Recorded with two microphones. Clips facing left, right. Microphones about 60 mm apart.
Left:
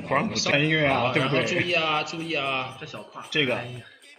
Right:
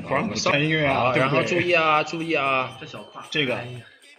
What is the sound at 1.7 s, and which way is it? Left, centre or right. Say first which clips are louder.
A man's voice: right 6 dB; right.